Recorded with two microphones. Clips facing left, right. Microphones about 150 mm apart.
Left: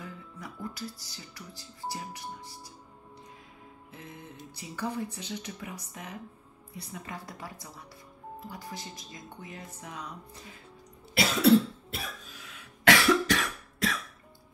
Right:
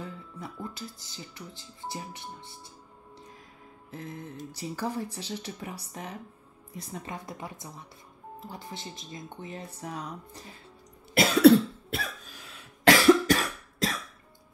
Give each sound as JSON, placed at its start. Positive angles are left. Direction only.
{"t": 0.0, "sound": "music", "side_deg": -25}
{"t": 4.6, "sound": "speech", "side_deg": -35}
{"t": 7.1, "sound": "speech", "side_deg": -20}
{"t": 11.1, "sound": "cough", "side_deg": -65}
{"t": 12.5, "sound": "cough", "side_deg": -35}